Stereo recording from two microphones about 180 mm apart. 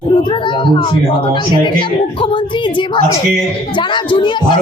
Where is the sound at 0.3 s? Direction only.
25° left (ahead or behind).